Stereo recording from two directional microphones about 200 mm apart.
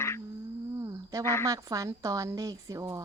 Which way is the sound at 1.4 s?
15° right (ahead or behind).